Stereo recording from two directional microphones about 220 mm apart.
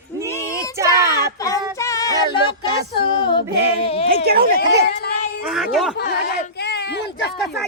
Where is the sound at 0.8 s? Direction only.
15° right (ahead or behind).